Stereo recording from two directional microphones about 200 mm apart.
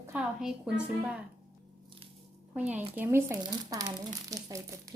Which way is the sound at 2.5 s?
5° right (ahead or behind).